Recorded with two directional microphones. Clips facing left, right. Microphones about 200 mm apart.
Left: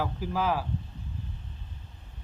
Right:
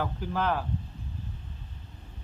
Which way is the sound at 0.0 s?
5° left (ahead or behind).